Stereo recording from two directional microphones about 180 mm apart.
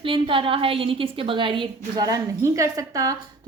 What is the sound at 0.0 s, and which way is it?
A woman's voice, 30° right (ahead or behind).